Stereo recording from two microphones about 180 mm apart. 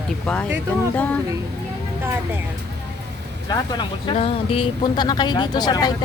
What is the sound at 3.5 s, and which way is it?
Speech, 25° left (ahead or behind).